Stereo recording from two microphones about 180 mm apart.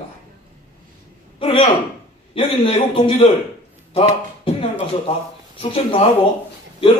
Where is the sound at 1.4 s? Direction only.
30° left (ahead or behind).